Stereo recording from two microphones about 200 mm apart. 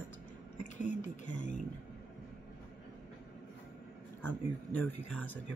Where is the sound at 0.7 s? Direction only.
35° left (ahead or behind).